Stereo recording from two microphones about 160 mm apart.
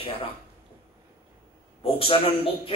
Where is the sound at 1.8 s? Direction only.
35° left (ahead or behind).